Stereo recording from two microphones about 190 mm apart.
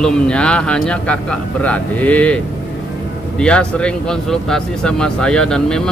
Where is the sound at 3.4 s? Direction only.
5° left (ahead or behind).